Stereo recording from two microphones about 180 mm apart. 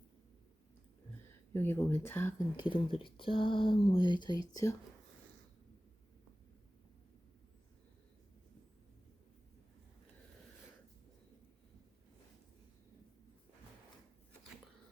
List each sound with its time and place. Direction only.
1.5 s speech: 10° left (ahead or behind)
2.6 s speech: 25° left (ahead or behind)